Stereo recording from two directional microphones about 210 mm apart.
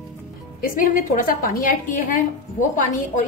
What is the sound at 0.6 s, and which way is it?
A woman's voice, 40° left (ahead or behind).